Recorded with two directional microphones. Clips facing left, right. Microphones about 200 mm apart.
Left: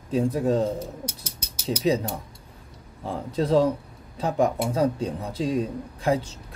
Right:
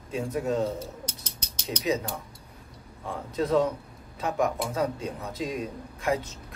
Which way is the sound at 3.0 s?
30° left (ahead or behind).